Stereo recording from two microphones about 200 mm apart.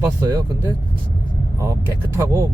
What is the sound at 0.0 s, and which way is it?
Speech, 15° right (ahead or behind).